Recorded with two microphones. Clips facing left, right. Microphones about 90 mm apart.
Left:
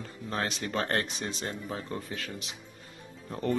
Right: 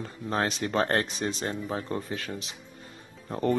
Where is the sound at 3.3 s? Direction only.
40° right (ahead or behind).